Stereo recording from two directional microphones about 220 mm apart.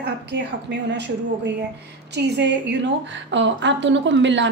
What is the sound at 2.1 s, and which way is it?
A woman's voice, 50° right (ahead or behind).